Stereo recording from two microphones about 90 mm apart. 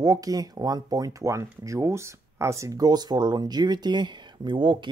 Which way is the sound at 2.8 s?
50° right (ahead or behind).